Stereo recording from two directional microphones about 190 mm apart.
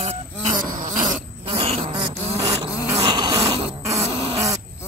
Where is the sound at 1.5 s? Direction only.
35° right (ahead or behind).